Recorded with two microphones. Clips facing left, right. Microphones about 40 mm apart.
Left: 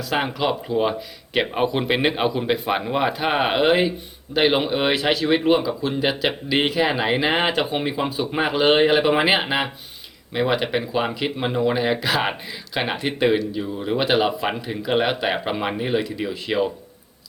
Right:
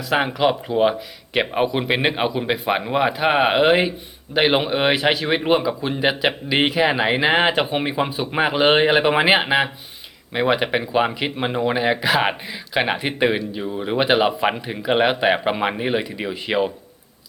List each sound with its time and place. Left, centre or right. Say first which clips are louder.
0.0 s speech: right 4 dB; centre